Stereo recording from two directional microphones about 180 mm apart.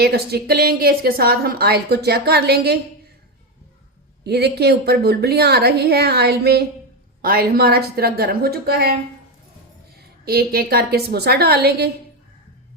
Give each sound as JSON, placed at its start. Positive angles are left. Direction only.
{"t": 0.0, "sound": "a woman's voice", "side_deg": -60}
{"t": 4.2, "sound": "a woman's voice", "side_deg": -65}
{"t": 10.2, "sound": "a woman's voice", "side_deg": -55}